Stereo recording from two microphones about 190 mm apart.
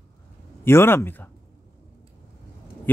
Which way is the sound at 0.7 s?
10° left (ahead or behind).